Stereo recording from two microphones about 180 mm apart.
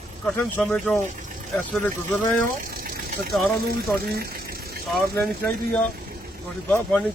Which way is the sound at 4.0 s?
60° right (ahead or behind).